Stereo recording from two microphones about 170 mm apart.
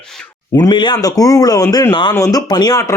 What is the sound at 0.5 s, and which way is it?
A man's voice, 25° left (ahead or behind).